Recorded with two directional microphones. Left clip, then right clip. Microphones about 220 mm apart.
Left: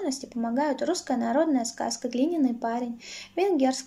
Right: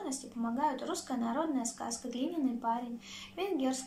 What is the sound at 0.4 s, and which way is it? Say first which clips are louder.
A woman's voice: left 6 dB; 40° left (ahead or behind).